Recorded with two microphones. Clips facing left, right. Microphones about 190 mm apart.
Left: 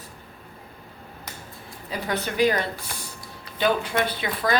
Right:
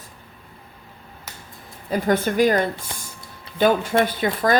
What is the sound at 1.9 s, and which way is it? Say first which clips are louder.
A woman's voice: right 8 dB; 50° right (ahead or behind).